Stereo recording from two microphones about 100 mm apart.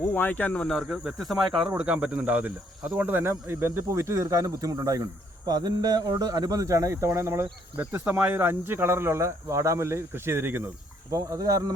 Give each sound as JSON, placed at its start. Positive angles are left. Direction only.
{"t": 0.1, "sound": "speech", "side_deg": 15}
{"t": 5.5, "sound": "mantra", "side_deg": -45}
{"t": 6.1, "sound": "speech", "side_deg": -40}
{"t": 11.1, "sound": "speech", "side_deg": -35}